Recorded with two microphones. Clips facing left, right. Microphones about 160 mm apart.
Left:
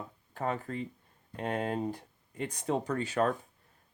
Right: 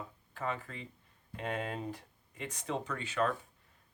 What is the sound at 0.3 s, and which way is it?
Speech, 40° left (ahead or behind).